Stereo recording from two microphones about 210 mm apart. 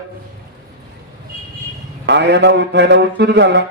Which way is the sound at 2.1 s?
55° right (ahead or behind).